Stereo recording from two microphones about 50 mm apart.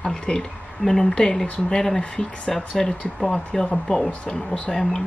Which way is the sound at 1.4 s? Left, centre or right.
Left.